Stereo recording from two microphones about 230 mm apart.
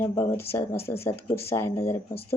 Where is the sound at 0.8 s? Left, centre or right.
Left.